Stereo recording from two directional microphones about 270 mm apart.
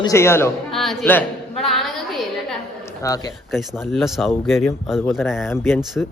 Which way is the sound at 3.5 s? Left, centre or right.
Centre.